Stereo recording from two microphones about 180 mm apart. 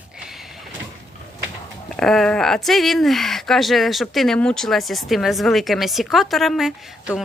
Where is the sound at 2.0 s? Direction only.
5° left (ahead or behind).